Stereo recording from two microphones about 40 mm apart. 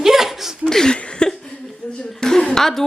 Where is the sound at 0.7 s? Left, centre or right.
Centre.